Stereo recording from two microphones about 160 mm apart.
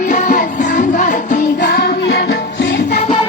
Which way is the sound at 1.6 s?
90° left.